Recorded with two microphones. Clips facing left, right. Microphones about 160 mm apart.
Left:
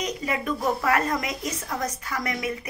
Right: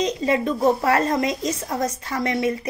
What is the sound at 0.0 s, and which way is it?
Speech, 30° right (ahead or behind).